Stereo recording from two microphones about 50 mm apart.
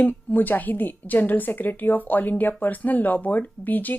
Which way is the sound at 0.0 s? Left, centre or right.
Left.